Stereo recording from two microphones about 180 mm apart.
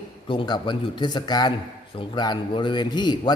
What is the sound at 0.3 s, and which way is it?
A man's voice, 25° left (ahead or behind).